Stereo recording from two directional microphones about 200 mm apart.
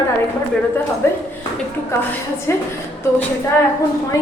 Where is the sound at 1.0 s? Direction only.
15° left (ahead or behind).